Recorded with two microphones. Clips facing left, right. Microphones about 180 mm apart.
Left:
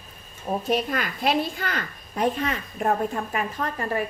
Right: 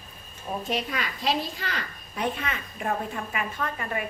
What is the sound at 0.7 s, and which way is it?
A woman's voice, 45° left (ahead or behind).